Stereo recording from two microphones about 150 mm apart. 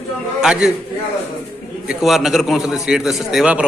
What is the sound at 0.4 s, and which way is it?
Speech, 5° right (ahead or behind).